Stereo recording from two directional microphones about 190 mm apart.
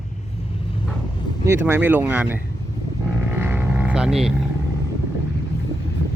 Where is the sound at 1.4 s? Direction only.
10° right (ahead or behind).